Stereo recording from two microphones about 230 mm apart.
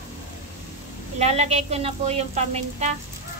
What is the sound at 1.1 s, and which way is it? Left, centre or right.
A woman's voice, right.